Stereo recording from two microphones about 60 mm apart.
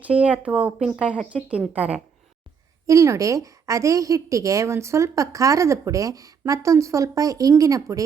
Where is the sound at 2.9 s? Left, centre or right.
Right.